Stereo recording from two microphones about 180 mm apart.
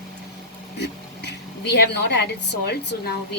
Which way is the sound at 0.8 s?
70° left (ahead or behind).